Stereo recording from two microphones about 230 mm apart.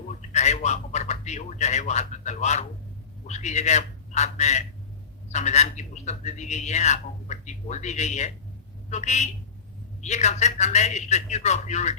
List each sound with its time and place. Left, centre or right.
0.2 s a man's voice: left